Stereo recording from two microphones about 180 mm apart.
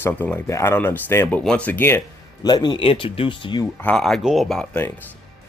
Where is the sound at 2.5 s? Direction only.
25° left (ahead or behind).